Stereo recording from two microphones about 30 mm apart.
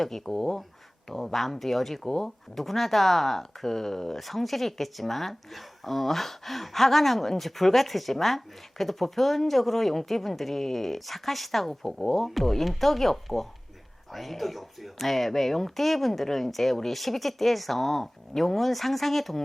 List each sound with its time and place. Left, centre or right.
0.0 s speech: centre